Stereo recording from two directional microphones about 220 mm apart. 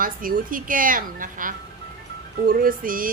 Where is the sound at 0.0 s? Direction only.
40° right (ahead or behind).